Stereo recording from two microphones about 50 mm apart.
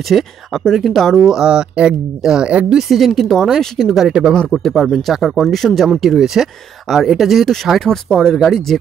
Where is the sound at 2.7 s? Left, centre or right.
Centre.